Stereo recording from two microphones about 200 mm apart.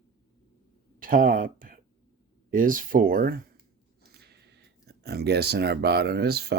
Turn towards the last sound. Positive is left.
turn(degrees=-55)  # may be behind; listen again after turning